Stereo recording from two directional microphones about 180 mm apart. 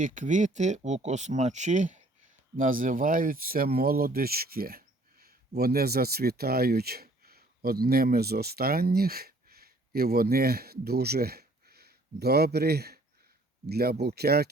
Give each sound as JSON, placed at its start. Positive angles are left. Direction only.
{"t": 0.0, "sound": "speech", "side_deg": -45}